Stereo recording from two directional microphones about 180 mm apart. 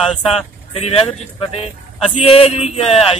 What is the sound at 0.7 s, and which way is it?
Speech, 35° left (ahead or behind).